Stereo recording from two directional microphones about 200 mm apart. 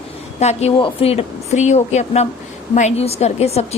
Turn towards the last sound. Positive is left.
turn(degrees=30)  # may be behind; listen again after turning